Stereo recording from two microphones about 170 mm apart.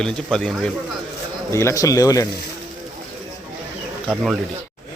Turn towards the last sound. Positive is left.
turn(degrees=-5)  # may be behind; listen again after turning